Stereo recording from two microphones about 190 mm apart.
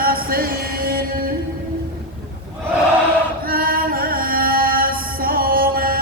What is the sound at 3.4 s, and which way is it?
Music, 50° right (ahead or behind).